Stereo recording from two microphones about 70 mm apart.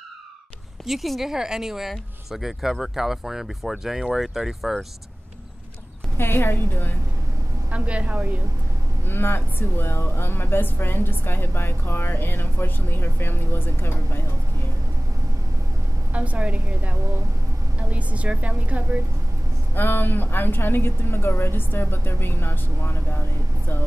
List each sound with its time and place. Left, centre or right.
0.8 s speech: centre
6.1 s speech: left
7.7 s a woman's voice: centre
9.0 s speech: left
16.1 s a woman's voice: centre
19.7 s speech: left